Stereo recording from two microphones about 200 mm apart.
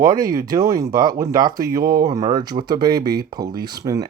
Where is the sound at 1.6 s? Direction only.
45° right (ahead or behind).